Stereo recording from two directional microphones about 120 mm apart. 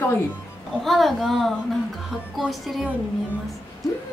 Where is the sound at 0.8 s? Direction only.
Centre (ahead or behind).